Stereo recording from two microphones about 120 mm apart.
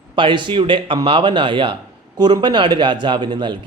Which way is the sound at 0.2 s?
40° right (ahead or behind).